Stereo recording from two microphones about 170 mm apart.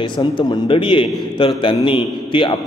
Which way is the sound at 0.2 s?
30° left (ahead or behind).